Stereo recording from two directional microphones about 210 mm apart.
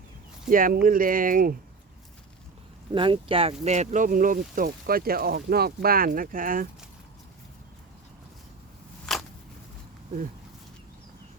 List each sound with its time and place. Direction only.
0.4 s speech: 40° right (ahead or behind)
2.9 s speech: 25° right (ahead or behind); by 6.7 s 40° right (ahead or behind)
9.1 s a sound: centre (ahead or behind)